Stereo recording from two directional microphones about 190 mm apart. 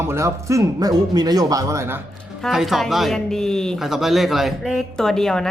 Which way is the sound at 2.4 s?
Centre (ahead or behind).